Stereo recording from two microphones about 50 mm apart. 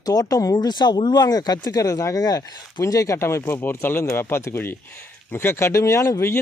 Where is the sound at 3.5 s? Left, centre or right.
Left.